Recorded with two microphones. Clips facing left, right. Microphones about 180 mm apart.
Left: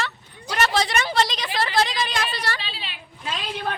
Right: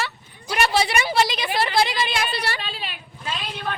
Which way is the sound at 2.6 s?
50° right (ahead or behind).